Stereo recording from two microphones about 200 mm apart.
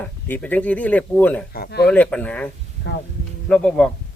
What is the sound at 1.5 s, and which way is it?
Speech, 55° left (ahead or behind).